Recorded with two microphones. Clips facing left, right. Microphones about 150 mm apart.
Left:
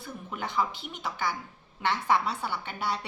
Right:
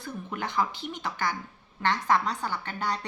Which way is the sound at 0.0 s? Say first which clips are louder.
Right 2 dB; 5° left (ahead or behind).